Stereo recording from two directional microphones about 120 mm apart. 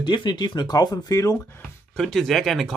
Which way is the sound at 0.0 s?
40° left (ahead or behind).